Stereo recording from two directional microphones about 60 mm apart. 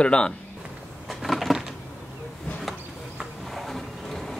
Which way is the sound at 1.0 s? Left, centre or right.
Centre.